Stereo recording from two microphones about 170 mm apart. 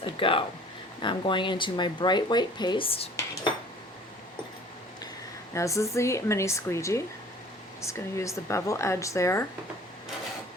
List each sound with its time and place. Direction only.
0.0 s speech: 30° left (ahead or behind)
5.5 s speech: 15° left (ahead or behind)